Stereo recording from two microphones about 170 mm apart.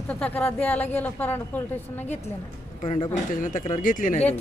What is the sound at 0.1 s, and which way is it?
A woman's voice, 10° left (ahead or behind).